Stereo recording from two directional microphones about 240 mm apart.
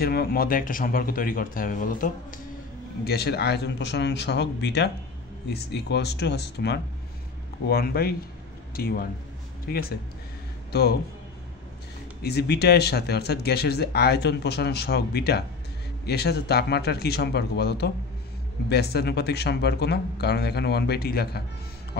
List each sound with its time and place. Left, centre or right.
0.0 s speech: left
12.2 s speech: left